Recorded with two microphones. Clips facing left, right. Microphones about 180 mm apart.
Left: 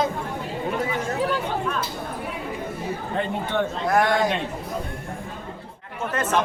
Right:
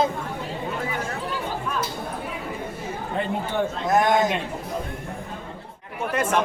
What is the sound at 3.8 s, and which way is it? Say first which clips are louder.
Speech: right 1 dB; 20° right (ahead or behind).